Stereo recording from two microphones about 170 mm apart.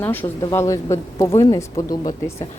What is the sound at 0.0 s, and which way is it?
Speech, 10° left (ahead or behind).